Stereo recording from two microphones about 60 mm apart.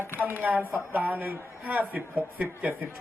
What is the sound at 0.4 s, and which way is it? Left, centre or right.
Speech, right.